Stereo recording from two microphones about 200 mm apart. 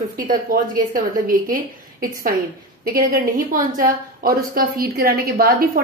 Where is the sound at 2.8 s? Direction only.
45° right (ahead or behind).